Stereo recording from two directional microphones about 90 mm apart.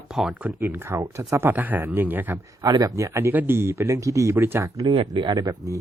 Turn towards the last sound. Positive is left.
turn(degrees=-45)  # may be behind; listen again after turning